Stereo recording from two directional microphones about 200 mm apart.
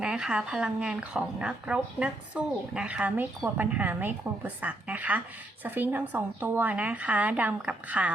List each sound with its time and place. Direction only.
0.0 s a woman's voice: 5° right (ahead or behind)